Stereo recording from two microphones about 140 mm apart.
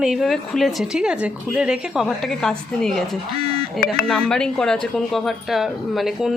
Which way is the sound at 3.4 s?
45° right (ahead or behind).